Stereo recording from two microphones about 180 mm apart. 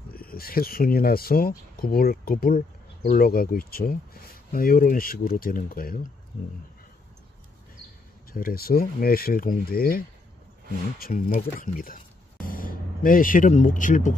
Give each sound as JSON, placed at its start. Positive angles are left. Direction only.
{"t": 0.1, "sound": "speech", "side_deg": 55}
{"t": 8.3, "sound": "speech", "side_deg": 55}